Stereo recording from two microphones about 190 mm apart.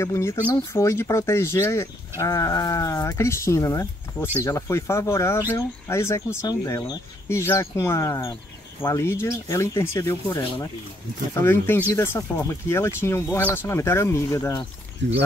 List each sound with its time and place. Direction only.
0.0 s speech: 15° left (ahead or behind)
15.0 s speech: 70° right (ahead or behind)